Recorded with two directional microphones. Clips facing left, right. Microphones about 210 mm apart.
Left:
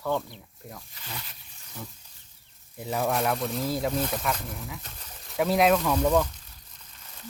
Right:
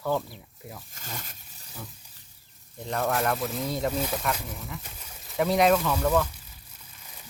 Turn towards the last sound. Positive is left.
turn(degrees=-10)  # may be behind; listen again after turning